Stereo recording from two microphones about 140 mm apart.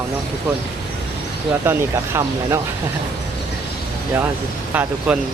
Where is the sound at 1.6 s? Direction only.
20° right (ahead or behind).